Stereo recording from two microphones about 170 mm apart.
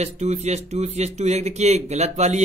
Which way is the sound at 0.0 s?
40° right (ahead or behind).